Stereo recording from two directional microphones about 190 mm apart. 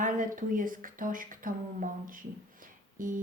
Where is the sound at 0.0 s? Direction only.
45° right (ahead or behind).